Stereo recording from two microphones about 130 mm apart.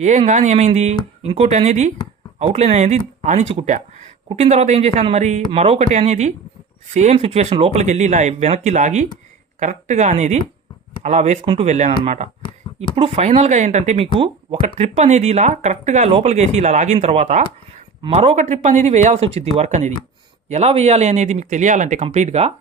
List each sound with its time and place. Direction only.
0.0 s speech: 65° right (ahead or behind)
5.5 s speech: 45° right (ahead or behind)
12.4 s a sound: 45° left (ahead or behind)
13.0 s speech: 45° right (ahead or behind)
14.8 s speech: 60° right (ahead or behind)